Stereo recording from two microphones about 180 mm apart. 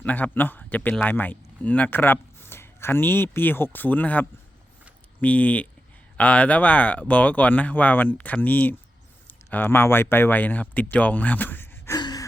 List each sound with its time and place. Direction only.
0.0 s speech: 10° left (ahead or behind)
11.9 s gasp: 25° left (ahead or behind)